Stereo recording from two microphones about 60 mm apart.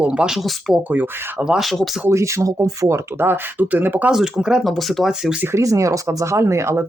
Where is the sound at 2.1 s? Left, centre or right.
Right.